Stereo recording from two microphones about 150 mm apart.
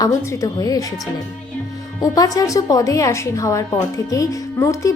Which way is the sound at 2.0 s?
25° left (ahead or behind).